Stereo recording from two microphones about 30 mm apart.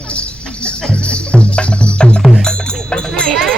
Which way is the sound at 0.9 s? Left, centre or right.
Left.